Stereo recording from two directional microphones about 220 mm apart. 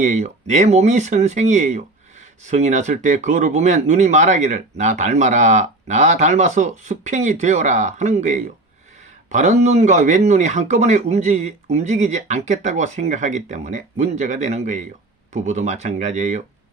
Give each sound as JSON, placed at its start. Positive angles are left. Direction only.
{"t": 0.0, "sound": "speech", "side_deg": -35}